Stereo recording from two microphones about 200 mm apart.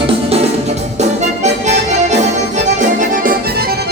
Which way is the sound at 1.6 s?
35° right (ahead or behind).